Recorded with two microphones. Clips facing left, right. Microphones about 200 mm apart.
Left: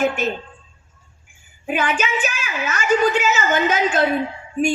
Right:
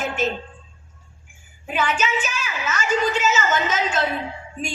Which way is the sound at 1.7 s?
55° left (ahead or behind).